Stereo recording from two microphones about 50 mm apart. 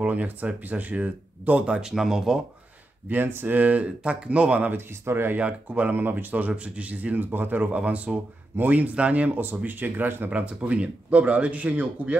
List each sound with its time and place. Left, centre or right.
0.0 s speech: right
1.7 s speech: centre
3.1 s speech: right
4.6 s speech: right
5.4 s speech: right
6.3 s a man's voice: right
10.3 s a man's voice: right